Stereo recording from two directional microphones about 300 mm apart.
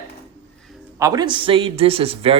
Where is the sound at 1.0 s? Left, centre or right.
Centre.